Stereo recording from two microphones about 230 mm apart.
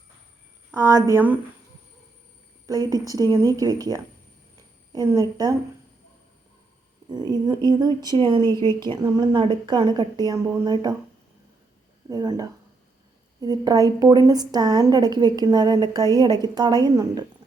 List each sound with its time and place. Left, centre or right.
0.7 s a woman's voice: centre
2.6 s a woman's voice: centre
7.1 s a woman's voice: centre
12.0 s a woman's voice: centre